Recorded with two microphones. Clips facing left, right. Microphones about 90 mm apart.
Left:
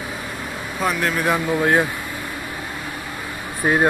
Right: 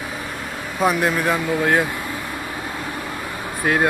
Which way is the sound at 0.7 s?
Centre (ahead or behind).